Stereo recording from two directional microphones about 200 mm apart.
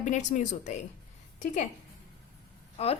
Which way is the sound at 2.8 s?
30° left (ahead or behind).